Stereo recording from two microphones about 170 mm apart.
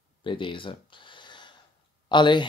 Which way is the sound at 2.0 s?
25° left (ahead or behind).